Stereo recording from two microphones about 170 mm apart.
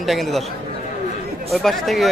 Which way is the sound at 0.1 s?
Centre (ahead or behind).